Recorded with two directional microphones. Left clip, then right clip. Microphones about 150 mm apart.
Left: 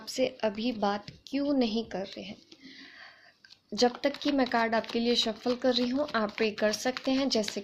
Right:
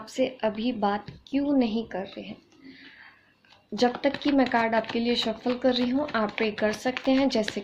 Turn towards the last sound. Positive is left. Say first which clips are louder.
# right 5 dB
turn(degrees=35)  # may be behind; listen again after turning